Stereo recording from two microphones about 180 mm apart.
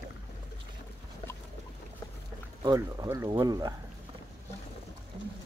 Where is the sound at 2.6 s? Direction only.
20° right (ahead or behind).